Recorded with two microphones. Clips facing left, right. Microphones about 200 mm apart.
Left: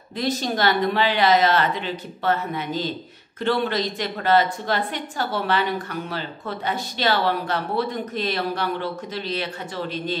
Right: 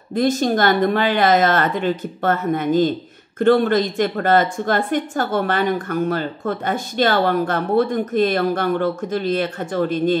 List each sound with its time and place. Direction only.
0.1 s a woman's voice: 50° right (ahead or behind)